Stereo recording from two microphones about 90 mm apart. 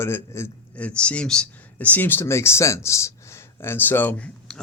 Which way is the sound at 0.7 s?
15° left (ahead or behind).